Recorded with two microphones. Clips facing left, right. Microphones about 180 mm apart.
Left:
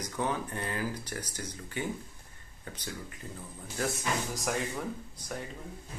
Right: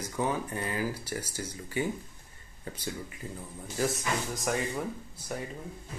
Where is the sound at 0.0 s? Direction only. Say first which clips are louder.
Right 2 dB; 10° right (ahead or behind).